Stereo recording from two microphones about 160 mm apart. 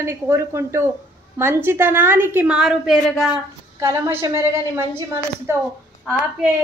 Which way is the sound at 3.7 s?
15° right (ahead or behind).